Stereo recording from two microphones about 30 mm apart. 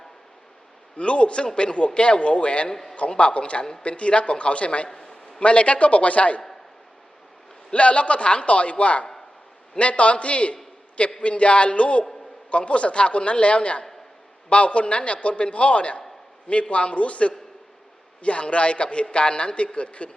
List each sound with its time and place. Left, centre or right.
0.9 s a man's voice: left
7.7 s a man's voice: left